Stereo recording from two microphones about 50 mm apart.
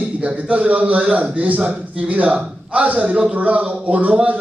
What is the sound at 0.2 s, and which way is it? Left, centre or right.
A man's voice, right.